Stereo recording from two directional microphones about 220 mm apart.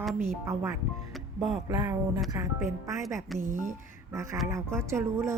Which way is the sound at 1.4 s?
Centre (ahead or behind).